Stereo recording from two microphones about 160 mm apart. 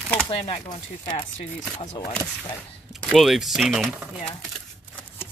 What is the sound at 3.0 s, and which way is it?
Speech, centre (ahead or behind).